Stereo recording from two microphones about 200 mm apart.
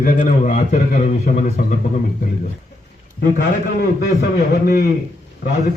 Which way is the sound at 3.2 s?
50° left (ahead or behind).